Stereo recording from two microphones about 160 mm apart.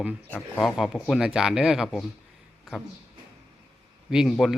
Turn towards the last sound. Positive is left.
turn(degrees=0)  # may be behind; listen again after turning